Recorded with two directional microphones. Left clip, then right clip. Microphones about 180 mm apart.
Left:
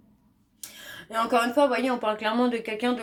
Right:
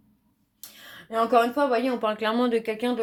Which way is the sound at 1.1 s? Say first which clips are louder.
Right 2 dB; 30° right (ahead or behind).